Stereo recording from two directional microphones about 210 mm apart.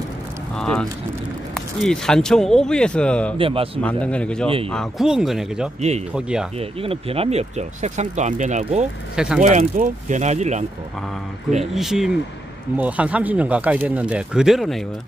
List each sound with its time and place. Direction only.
0.6 s speech: 5° left (ahead or behind)
3.3 s speech: 25° right (ahead or behind)
3.8 s speech: 5° left (ahead or behind)
5.8 s speech: 30° right (ahead or behind)
6.1 s speech: 5° right (ahead or behind)
6.6 s speech: 25° right (ahead or behind)
9.1 s speech: 5° right (ahead or behind)
9.4 s speech: 35° right (ahead or behind)
11.7 s speech: centre (ahead or behind)